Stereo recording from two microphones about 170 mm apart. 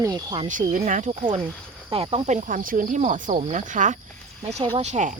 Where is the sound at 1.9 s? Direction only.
30° right (ahead or behind).